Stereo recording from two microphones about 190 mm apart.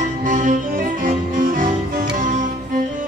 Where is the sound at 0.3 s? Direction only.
45° right (ahead or behind).